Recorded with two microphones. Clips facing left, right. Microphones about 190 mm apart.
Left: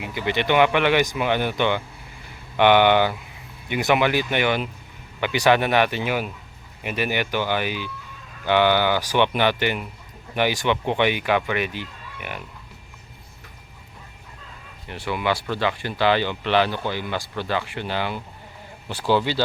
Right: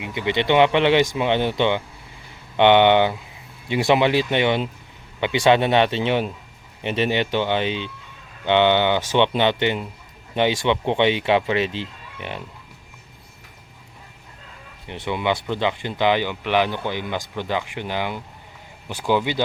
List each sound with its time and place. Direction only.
0.0 s speech: 25° right (ahead or behind)
14.8 s speech: 20° right (ahead or behind)